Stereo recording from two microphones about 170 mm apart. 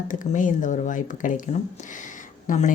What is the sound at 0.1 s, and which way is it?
Speech, 50° left (ahead or behind).